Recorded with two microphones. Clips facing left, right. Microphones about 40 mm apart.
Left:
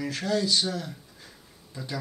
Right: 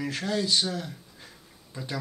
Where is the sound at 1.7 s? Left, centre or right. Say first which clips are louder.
Even; centre.